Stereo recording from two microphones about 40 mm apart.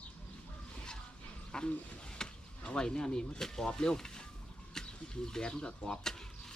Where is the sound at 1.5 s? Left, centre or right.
Left.